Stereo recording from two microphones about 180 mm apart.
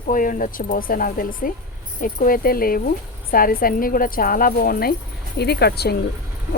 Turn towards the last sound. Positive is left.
turn(degrees=65)  # may be behind; listen again after turning